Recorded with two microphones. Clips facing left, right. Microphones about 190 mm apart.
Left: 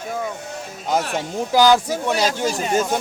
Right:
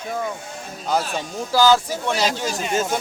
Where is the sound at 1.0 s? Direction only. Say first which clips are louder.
Left 2 dB; 70° left (ahead or behind).